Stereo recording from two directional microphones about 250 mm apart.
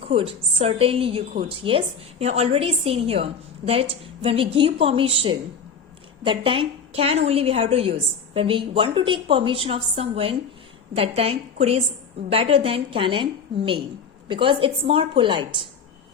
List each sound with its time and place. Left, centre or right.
0.1 s a woman's voice: right